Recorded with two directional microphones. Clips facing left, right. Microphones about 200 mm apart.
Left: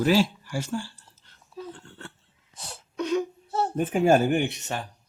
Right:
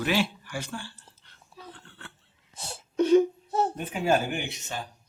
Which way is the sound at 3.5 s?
15° right (ahead or behind).